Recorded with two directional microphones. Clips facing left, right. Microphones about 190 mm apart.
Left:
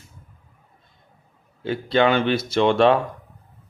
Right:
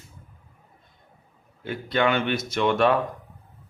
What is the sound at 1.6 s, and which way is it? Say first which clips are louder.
Speech: left 5 dB; 30° left (ahead or behind).